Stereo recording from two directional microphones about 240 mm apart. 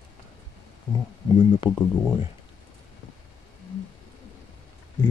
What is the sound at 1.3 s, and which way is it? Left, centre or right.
Speech, centre.